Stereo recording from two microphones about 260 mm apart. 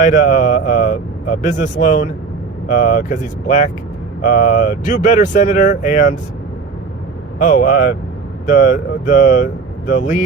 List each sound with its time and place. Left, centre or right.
0.0 s speech: left
7.3 s speech: left